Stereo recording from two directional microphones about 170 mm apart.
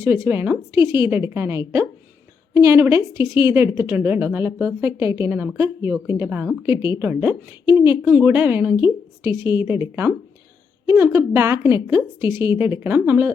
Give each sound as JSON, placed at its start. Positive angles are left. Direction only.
{"t": 0.0, "sound": "a woman's voice", "side_deg": -15}
{"t": 8.7, "sound": "a woman's voice", "side_deg": 30}
{"t": 9.4, "sound": "a woman's voice", "side_deg": -15}